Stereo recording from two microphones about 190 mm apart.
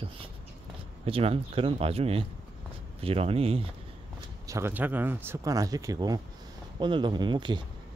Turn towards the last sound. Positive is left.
turn(degrees=-25)  # may be behind; listen again after turning